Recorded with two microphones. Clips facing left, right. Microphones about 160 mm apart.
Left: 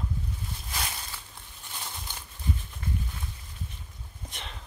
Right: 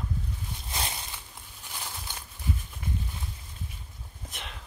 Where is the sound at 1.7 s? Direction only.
5° right (ahead or behind).